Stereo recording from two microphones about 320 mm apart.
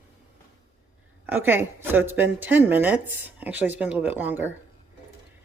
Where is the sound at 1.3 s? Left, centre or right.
Centre.